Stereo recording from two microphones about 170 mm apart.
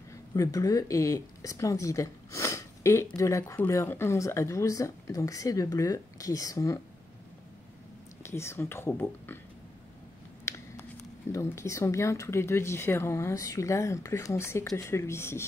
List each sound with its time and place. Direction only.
0.3 s speech: 20° left (ahead or behind)
8.2 s speech: 15° left (ahead or behind)
11.3 s speech: 15° left (ahead or behind)